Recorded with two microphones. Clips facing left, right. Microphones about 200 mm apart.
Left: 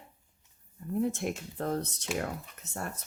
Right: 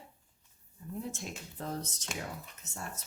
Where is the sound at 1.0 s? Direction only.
60° left (ahead or behind).